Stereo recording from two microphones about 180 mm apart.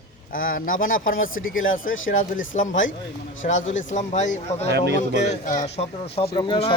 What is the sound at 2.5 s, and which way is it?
Speech, 45° left (ahead or behind).